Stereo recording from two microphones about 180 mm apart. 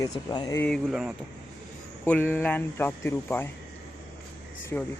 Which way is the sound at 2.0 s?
10° left (ahead or behind).